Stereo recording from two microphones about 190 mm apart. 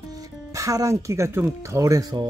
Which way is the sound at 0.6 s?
15° right (ahead or behind).